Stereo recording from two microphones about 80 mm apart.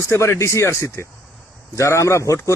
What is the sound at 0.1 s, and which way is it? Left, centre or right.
A man's voice, left.